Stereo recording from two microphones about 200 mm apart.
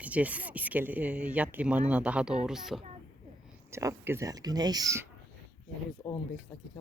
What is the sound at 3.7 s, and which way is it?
Speech, 15° right (ahead or behind).